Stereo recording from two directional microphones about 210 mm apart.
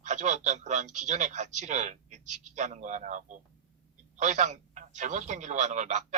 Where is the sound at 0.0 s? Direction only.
35° right (ahead or behind).